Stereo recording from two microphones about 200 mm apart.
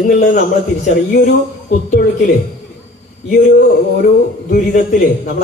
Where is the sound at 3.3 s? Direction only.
40° left (ahead or behind).